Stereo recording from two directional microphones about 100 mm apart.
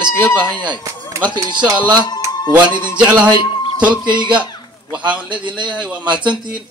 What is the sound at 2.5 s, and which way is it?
Music, 15° right (ahead or behind).